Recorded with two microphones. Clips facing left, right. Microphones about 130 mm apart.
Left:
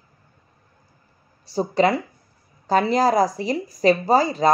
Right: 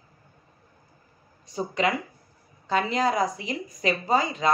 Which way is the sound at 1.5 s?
35° left (ahead or behind).